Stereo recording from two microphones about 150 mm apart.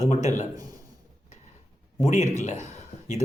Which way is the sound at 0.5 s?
25° right (ahead or behind).